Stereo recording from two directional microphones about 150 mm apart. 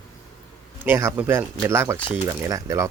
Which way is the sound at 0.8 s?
15° right (ahead or behind).